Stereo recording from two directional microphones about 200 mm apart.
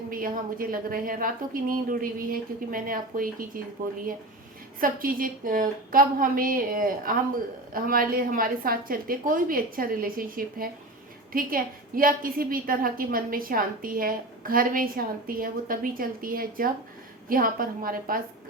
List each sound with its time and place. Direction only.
0.1 s a woman's voice: 45° right (ahead or behind)
4.8 s a woman's voice: 45° right (ahead or behind)